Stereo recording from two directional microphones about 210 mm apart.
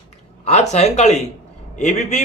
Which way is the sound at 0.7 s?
30° left (ahead or behind).